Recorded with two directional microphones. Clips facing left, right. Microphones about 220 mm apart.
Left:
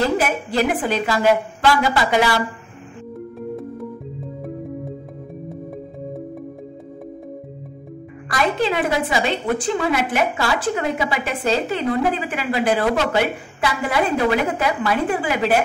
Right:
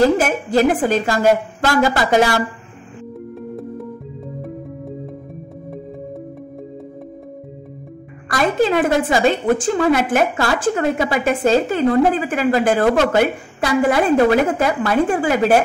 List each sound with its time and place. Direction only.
0.2 s a woman's voice: 45° right (ahead or behind)
3.3 s music: centre (ahead or behind)
8.3 s a woman's voice: 45° right (ahead or behind)